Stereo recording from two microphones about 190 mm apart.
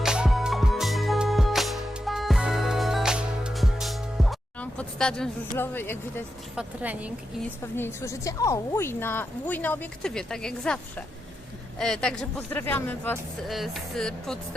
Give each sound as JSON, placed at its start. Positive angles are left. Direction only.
{"t": 0.0, "sound": "music", "side_deg": -5}
{"t": 5.5, "sound": "a woman's voice", "side_deg": 10}
{"t": 6.6, "sound": "speech", "side_deg": -5}
{"t": 7.6, "sound": "a woman's voice", "side_deg": 15}